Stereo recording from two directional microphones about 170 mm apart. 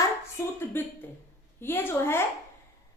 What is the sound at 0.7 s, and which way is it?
A woman's voice, 10° left (ahead or behind).